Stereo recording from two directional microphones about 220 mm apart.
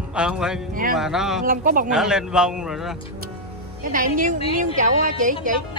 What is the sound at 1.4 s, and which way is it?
Speech, 40° right (ahead or behind).